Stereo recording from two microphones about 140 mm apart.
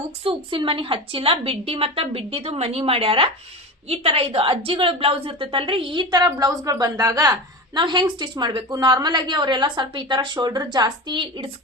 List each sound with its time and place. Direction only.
0.3 s a woman's voice: 35° right (ahead or behind)